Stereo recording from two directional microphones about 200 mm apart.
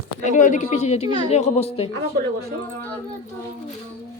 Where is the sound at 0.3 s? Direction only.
40° left (ahead or behind).